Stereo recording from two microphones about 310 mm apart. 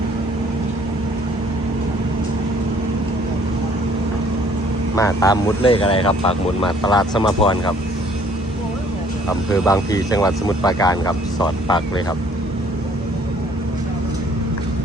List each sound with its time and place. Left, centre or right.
4.9 s speech: centre
9.6 s speech: centre